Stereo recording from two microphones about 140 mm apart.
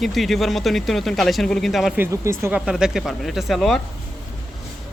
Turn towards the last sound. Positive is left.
turn(degrees=0)  # may be behind; listen again after turning